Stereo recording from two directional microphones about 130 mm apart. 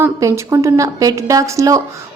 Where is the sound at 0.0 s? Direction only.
25° right (ahead or behind).